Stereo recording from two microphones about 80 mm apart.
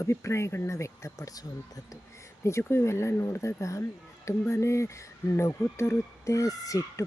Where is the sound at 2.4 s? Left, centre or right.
Left.